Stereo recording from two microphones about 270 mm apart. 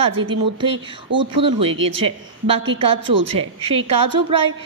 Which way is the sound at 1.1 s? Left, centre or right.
Centre.